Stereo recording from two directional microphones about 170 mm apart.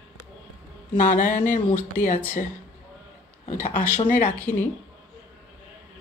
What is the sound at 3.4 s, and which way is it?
Speech, 50° left (ahead or behind).